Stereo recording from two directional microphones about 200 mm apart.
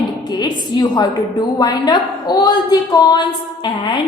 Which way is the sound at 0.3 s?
20° left (ahead or behind).